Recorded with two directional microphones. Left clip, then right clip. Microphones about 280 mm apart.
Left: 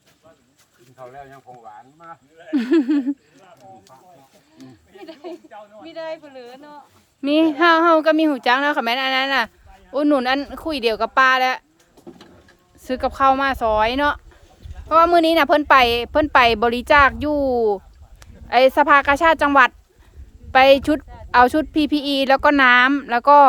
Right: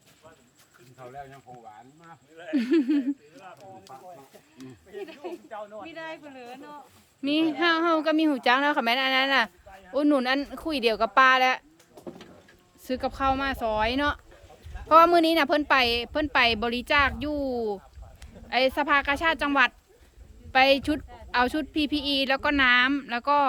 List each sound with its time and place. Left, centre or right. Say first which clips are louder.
2.0 s speech: left 1 dB; centre
3.4 s speech: left 1 dB; centre
5.0 s speech: left 6 dB; left
5.5 s speech: right 2 dB; right
5.8 s speech: left 7 dB; left; by 11.6 s centre
12.8 s a woman's voice: left 9 dB; centre